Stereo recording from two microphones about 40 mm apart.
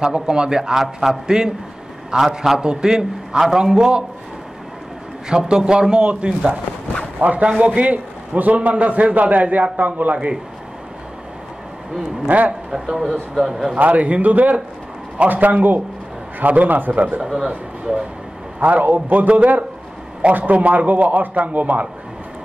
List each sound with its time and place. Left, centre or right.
0.0 s a man's voice: right
2.6 s a man's voice: centre
5.3 s a man's voice: centre
7.2 s a man's voice: right
12.3 s a man's voice: right
12.7 s a man's voice: centre
13.7 s a man's voice: right
18.6 s a man's voice: right